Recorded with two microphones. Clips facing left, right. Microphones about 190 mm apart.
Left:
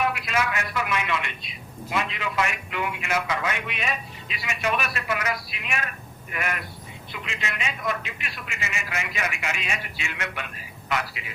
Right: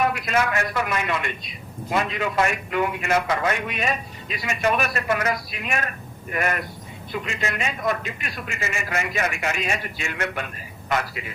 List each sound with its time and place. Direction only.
0.0 s a man's voice: 45° right (ahead or behind)